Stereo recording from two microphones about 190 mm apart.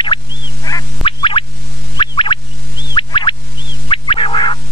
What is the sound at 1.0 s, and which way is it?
Music, 25° left (ahead or behind).